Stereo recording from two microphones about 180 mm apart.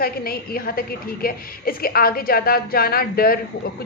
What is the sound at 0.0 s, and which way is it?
A woman's voice, 55° left (ahead or behind).